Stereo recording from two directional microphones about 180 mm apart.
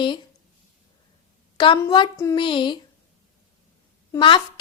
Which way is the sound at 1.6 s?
25° left (ahead or behind).